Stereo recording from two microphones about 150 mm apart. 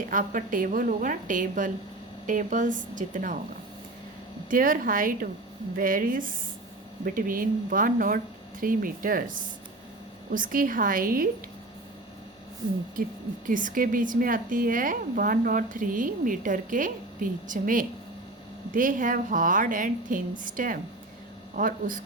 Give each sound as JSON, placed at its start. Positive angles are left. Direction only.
{"t": 0.1, "sound": "a woman's voice", "side_deg": -60}
{"t": 4.4, "sound": "speech", "side_deg": -65}
{"t": 10.3, "sound": "speech", "side_deg": -65}
{"t": 13.5, "sound": "a woman's voice", "side_deg": -65}